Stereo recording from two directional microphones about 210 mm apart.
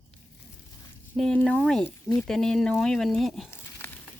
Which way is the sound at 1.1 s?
5° left (ahead or behind).